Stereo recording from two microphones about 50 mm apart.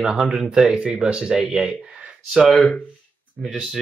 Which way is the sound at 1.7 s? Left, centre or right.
Right.